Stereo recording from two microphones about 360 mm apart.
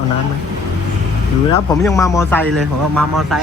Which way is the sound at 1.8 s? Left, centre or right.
Centre.